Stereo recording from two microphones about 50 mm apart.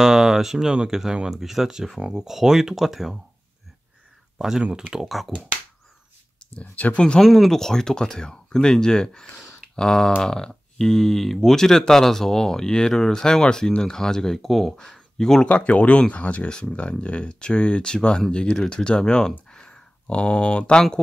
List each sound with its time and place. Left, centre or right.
0.0 s speech: centre
4.4 s speech: centre
6.6 s speech: left
7.2 s speech: centre
15.4 s speech: left
19.5 s a sound: centre